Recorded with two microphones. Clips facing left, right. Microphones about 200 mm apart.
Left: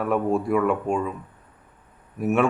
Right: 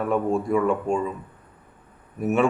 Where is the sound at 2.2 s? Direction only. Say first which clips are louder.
Even; centre (ahead or behind).